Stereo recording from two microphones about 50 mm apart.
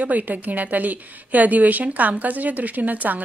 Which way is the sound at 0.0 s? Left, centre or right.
Right.